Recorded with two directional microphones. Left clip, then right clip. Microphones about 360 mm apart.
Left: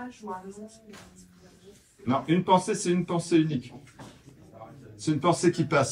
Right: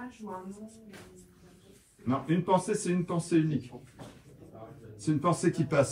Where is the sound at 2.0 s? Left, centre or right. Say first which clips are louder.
Left 5 dB; centre.